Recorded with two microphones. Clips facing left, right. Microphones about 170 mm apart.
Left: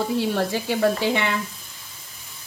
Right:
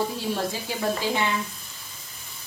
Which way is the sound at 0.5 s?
65° left (ahead or behind).